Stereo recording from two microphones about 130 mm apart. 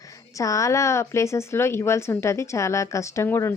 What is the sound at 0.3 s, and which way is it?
Speech, 25° left (ahead or behind).